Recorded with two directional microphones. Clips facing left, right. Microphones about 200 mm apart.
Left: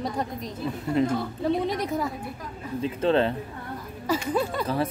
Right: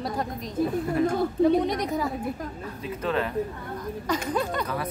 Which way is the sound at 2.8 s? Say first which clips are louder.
Left 5 dB; 30° left (ahead or behind).